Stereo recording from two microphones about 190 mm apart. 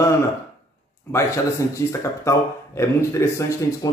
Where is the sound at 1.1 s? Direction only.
15° left (ahead or behind).